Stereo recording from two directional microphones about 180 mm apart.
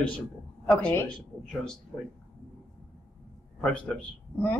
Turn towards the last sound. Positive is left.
turn(degrees=5)  # may be behind; listen again after turning